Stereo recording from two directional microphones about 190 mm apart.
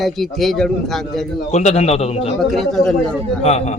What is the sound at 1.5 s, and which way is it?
Speech, 35° left (ahead or behind).